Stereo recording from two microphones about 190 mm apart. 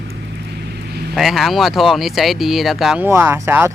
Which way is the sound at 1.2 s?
Centre (ahead or behind).